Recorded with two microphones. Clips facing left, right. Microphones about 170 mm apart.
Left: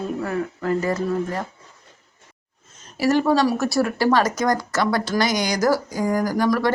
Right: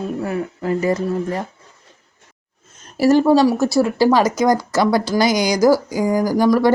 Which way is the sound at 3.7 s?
10° right (ahead or behind).